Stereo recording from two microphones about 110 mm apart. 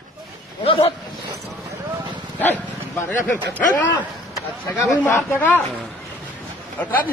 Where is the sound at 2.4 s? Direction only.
15° left (ahead or behind).